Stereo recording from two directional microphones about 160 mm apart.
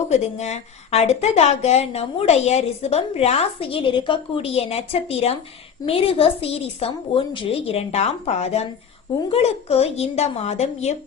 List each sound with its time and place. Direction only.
0.1 s speech: 45° left (ahead or behind)